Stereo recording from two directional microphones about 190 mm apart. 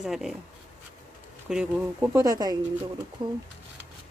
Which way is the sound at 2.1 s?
20° right (ahead or behind).